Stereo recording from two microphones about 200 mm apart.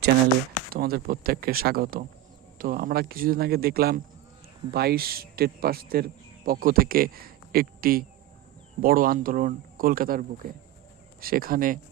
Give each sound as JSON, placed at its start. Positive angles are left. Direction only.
{"t": 0.7, "sound": "speech", "side_deg": -50}